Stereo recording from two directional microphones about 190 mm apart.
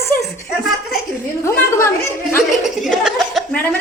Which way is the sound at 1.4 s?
15° left (ahead or behind).